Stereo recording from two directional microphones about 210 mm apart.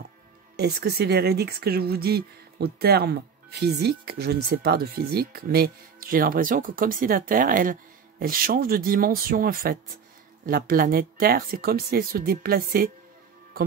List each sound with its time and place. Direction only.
0.6 s speech: 50° right (ahead or behind)